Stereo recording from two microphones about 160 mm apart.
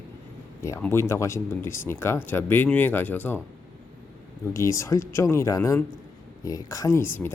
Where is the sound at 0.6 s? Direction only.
15° left (ahead or behind).